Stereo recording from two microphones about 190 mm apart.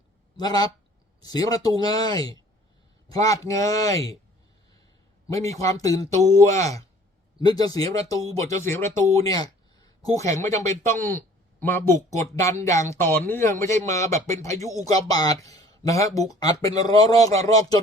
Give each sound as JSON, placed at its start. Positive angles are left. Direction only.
{"t": 0.3, "sound": "speech", "side_deg": 20}
{"t": 5.3, "sound": "speech", "side_deg": 15}